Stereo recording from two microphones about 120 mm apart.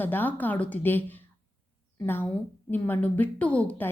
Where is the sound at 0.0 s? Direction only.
15° left (ahead or behind).